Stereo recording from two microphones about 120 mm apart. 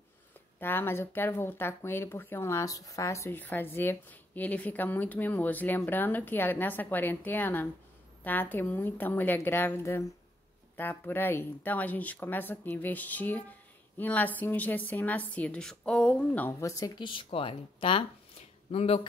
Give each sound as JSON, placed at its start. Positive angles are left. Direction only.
{"t": 0.6, "sound": "speech", "side_deg": 20}